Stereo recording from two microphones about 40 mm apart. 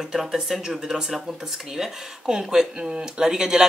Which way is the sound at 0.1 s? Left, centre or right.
Centre.